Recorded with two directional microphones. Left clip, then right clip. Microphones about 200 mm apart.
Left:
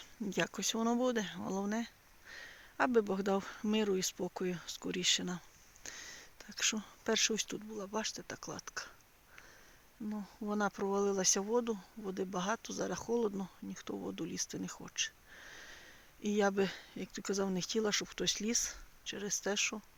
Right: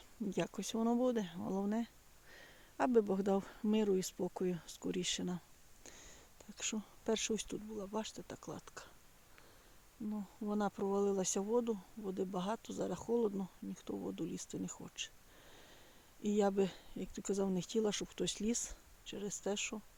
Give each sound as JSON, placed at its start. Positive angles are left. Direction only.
{"t": 0.0, "sound": "speech", "side_deg": -5}
{"t": 5.8, "sound": "a sound", "side_deg": 0}
{"t": 7.8, "sound": "speech", "side_deg": 0}
{"t": 10.1, "sound": "speech", "side_deg": 15}
{"t": 10.5, "sound": "speech", "side_deg": 0}
{"t": 13.9, "sound": "speech", "side_deg": 10}
{"t": 14.2, "sound": "speech", "side_deg": -5}